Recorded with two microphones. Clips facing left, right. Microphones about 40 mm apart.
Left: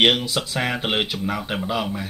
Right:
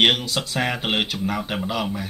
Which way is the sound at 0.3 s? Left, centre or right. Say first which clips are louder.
Even; centre.